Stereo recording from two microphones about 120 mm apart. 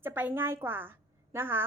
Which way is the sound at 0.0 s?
15° right (ahead or behind).